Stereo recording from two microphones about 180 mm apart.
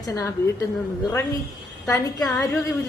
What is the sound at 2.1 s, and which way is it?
Speech, 5° left (ahead or behind).